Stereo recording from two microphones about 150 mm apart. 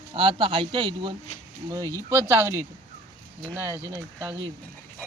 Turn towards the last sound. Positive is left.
turn(degrees=-15)  # may be behind; listen again after turning